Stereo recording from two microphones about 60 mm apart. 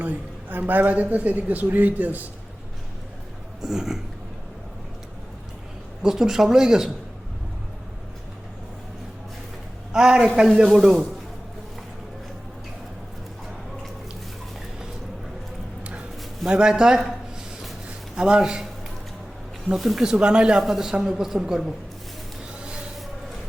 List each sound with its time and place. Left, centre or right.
0.0 s a sound: right
0.7 s a man's voice: right
3.6 s a man's voice: centre
6.0 s a man's voice: centre
9.9 s a man's voice: centre
15.8 s a sound: right
16.5 s a man's voice: centre
18.2 s a man's voice: centre
20.1 s a man's voice: centre
20.6 s a woman's voice: centre